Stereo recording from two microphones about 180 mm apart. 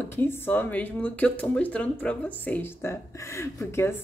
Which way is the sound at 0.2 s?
10° left (ahead or behind).